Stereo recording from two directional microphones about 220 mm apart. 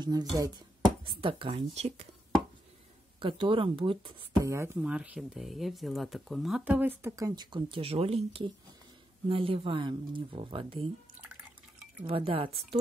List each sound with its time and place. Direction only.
0.0 s speech: 15° right (ahead or behind)
3.2 s speech: 25° right (ahead or behind)
12.0 s speech: 25° right (ahead or behind)